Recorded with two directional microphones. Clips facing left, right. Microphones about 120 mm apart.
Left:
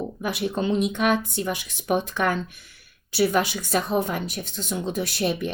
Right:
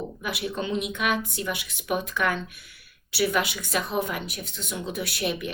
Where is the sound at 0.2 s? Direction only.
35° left (ahead or behind).